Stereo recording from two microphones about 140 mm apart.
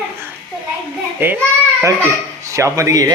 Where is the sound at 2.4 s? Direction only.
20° right (ahead or behind).